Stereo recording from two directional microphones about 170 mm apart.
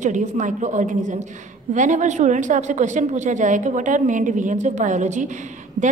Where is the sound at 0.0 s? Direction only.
45° right (ahead or behind).